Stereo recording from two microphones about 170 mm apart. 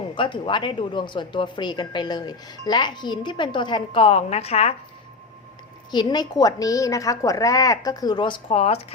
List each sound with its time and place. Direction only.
0.2 s speech: 30° left (ahead or behind)
5.9 s speech: 25° left (ahead or behind)